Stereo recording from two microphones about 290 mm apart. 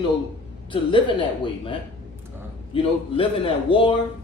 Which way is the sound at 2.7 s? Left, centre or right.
Centre.